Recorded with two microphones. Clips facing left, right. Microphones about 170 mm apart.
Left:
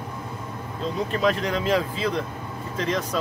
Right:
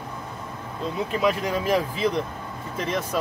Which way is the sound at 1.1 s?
10° right (ahead or behind).